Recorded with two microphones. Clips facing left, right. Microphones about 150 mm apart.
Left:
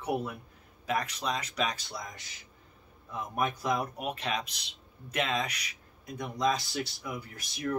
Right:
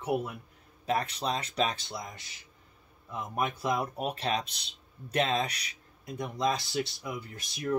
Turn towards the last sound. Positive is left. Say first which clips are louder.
# right 2 dB
turn(degrees=-25)  # may be behind; listen again after turning